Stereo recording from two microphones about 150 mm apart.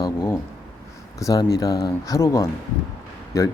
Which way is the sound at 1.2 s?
25° left (ahead or behind).